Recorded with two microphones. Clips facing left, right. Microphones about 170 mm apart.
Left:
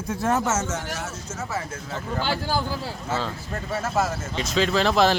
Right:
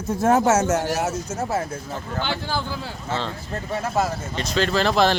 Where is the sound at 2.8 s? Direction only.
5° left (ahead or behind).